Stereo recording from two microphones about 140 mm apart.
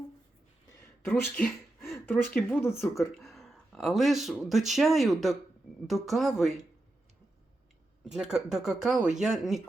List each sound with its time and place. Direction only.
1.0 s speech: 10° left (ahead or behind)
3.2 s speech: centre (ahead or behind)
8.0 s speech: 5° right (ahead or behind)